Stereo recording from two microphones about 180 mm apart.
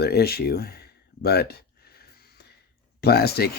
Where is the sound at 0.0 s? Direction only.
60° left (ahead or behind).